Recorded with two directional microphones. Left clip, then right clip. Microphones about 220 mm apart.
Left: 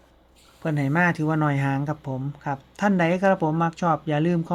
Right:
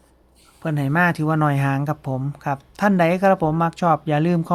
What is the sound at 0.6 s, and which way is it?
Speech, 10° right (ahead or behind).